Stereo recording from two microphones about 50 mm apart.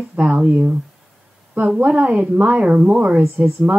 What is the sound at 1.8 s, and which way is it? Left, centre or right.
Speech, right.